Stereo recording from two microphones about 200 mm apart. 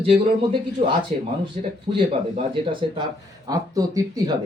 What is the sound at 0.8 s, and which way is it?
Speech, 35° right (ahead or behind).